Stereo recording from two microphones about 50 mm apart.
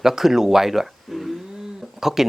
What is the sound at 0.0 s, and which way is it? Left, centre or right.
Speech, centre.